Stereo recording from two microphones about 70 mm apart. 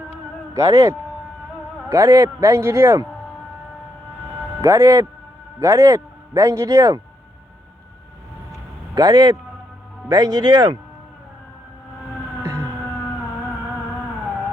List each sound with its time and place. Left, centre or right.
0.5 s speech: right
4.6 s speech: right
9.0 s a man's voice: right
12.4 s a sound: right